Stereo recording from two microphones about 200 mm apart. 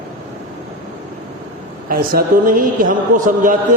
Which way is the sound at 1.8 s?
45° right (ahead or behind).